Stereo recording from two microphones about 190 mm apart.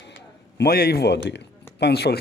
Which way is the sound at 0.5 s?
55° left (ahead or behind).